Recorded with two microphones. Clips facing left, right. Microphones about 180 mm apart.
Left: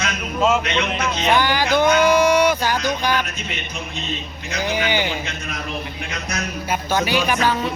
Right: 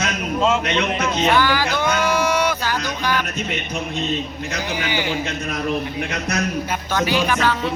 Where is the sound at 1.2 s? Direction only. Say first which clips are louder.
Left 1 dB; 15° left (ahead or behind).